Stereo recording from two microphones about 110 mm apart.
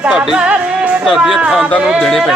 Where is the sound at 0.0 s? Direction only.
5° right (ahead or behind).